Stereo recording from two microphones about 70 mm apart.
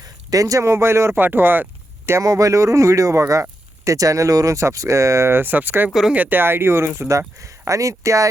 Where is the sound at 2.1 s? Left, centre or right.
Right.